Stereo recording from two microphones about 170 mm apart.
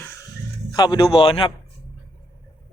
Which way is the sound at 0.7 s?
25° left (ahead or behind).